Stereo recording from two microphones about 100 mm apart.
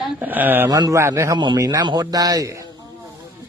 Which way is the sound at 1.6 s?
35° right (ahead or behind).